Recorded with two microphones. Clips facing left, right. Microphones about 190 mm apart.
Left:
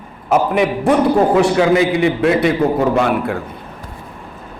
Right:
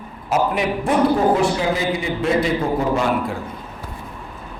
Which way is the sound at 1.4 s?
70° left (ahead or behind).